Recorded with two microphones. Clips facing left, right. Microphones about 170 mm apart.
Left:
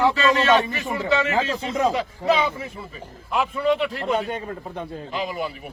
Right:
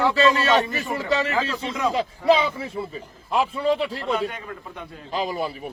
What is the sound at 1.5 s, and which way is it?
Speech, 35° left (ahead or behind).